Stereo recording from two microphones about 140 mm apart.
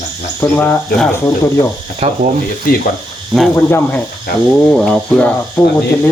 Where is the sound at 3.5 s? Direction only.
15° left (ahead or behind).